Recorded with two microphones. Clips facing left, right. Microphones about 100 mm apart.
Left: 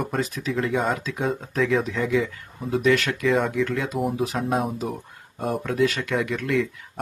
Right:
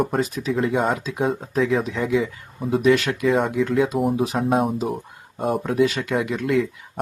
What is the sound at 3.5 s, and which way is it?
Speech, 15° right (ahead or behind).